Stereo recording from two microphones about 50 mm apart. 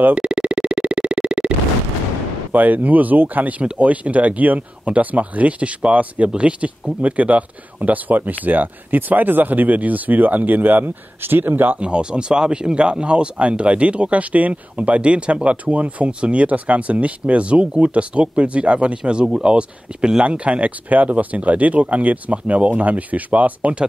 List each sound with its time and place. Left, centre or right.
0.1 s a sound: right
2.5 s speech: right
11.8 s speech: centre